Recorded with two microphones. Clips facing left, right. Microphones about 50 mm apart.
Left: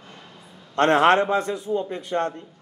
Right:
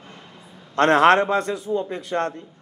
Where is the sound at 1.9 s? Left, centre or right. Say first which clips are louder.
Even; right.